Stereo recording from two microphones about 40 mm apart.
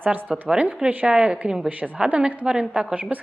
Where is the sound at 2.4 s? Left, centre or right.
Centre.